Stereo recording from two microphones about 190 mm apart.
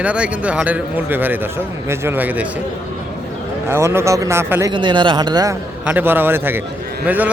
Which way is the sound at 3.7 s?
15° right (ahead or behind).